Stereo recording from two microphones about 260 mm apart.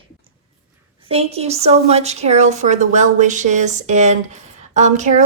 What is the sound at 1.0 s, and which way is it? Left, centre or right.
A woman's voice, right.